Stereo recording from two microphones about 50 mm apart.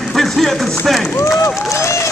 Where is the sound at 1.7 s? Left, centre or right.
Left.